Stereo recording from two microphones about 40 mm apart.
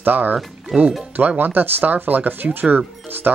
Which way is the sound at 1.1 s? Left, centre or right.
Right.